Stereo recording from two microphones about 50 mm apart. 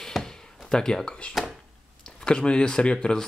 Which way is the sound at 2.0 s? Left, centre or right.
Centre.